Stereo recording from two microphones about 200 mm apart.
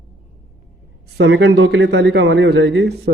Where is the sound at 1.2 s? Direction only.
65° right (ahead or behind).